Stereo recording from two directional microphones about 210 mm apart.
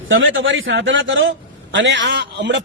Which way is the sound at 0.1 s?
65° right (ahead or behind).